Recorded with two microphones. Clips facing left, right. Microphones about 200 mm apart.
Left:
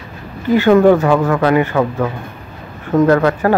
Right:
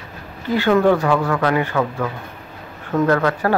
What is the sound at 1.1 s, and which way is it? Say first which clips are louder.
Speech: left 5 dB; 40° left (ahead or behind).